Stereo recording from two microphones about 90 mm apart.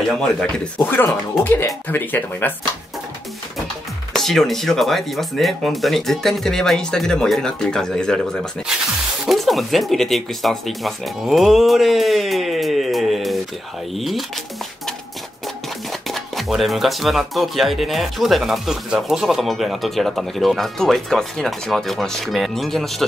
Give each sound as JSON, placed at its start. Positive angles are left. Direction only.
{"t": 0.2, "sound": "speech", "side_deg": 5}
{"t": 0.8, "sound": "speech", "side_deg": 20}
{"t": 4.1, "sound": "speech", "side_deg": 5}
{"t": 16.1, "sound": "speech", "side_deg": 0}